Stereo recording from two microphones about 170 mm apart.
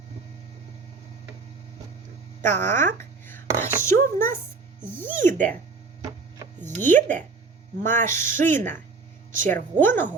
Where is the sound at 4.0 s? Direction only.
55° right (ahead or behind).